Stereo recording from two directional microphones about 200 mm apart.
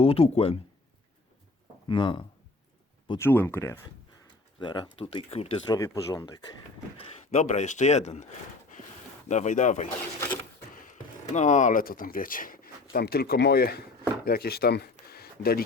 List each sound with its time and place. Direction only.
0.0 s speech: 30° left (ahead or behind)
1.9 s speech: 25° left (ahead or behind)
3.2 s speech: 10° left (ahead or behind)
4.6 s speech: 25° left (ahead or behind)
5.7 s speech: 15° left (ahead or behind)
6.9 s speech: 30° left (ahead or behind)
9.3 s speech: 35° left (ahead or behind)
14.9 s a sound: 50° left (ahead or behind)